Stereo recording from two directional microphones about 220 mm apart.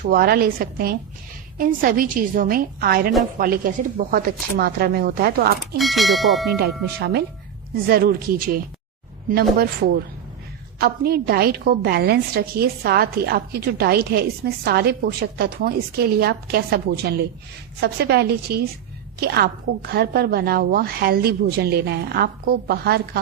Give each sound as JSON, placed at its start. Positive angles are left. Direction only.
{"t": 0.0, "sound": "a woman's voice", "side_deg": -40}
{"t": 5.7, "sound": "speech", "side_deg": 0}
{"t": 7.9, "sound": "a woman's voice", "side_deg": -45}